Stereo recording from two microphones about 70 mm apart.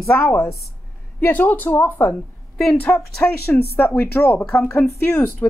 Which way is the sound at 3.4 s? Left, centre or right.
Left.